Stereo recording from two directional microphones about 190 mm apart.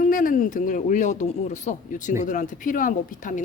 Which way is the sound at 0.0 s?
45° left (ahead or behind).